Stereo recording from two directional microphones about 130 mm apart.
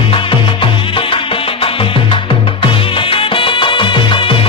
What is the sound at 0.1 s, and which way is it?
Music, 40° left (ahead or behind).